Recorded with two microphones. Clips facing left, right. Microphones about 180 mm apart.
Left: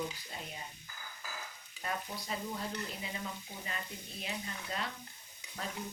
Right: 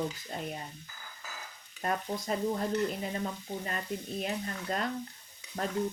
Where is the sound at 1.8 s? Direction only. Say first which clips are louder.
Right 7 dB; 50° right (ahead or behind).